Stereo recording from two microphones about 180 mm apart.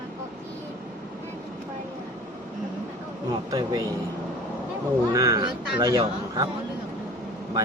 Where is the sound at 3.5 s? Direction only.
20° right (ahead or behind).